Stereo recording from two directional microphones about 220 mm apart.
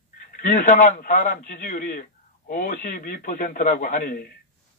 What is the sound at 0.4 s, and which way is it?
Speech, 35° left (ahead or behind).